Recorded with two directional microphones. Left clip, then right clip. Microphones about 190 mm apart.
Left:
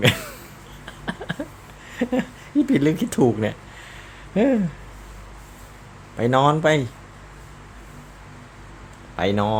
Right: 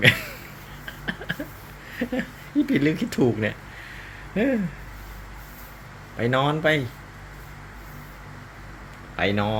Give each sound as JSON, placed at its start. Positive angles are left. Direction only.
{"t": 0.0, "sound": "a sound", "side_deg": 25}
{"t": 1.9, "sound": "speech", "side_deg": 25}
{"t": 6.1, "sound": "speech", "side_deg": 25}
{"t": 9.1, "sound": "speech", "side_deg": 20}